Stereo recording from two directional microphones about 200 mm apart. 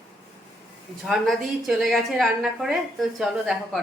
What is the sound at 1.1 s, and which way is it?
A woman's voice, 5° right (ahead or behind).